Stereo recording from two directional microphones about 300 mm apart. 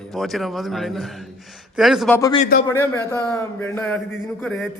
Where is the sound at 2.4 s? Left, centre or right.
Left.